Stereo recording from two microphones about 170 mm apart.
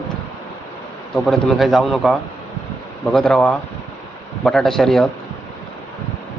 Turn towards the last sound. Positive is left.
turn(degrees=0)  # may be behind; listen again after turning